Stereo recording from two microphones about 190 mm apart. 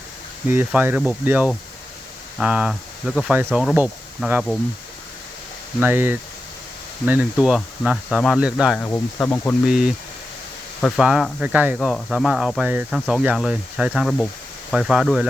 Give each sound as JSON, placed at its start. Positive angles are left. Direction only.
{"t": 0.5, "sound": "speech", "side_deg": -10}
{"t": 5.8, "sound": "speech", "side_deg": -10}
{"t": 8.8, "sound": "speech", "side_deg": 10}
{"t": 9.6, "sound": "speech", "side_deg": -5}